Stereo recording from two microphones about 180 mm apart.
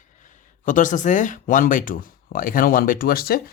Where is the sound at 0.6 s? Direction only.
45° left (ahead or behind).